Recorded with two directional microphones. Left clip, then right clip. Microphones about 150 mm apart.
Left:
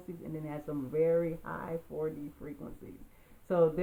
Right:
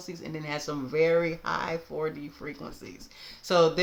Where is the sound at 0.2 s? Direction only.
20° right (ahead or behind).